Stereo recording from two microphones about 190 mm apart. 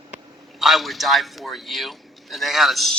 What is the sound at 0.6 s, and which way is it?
A man's voice, centre (ahead or behind).